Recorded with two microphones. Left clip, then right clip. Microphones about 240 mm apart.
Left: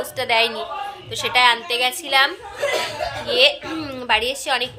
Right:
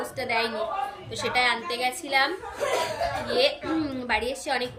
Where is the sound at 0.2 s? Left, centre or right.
Centre.